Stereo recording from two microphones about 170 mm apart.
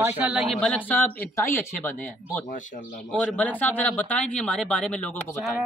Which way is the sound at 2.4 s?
50° left (ahead or behind).